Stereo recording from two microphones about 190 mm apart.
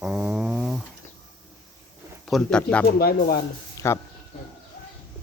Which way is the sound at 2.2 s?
Centre (ahead or behind).